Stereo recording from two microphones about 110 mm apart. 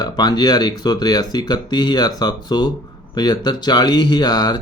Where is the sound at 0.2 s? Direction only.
40° left (ahead or behind).